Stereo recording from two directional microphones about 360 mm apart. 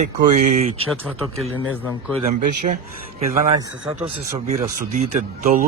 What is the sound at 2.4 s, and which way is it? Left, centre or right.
Speech, right.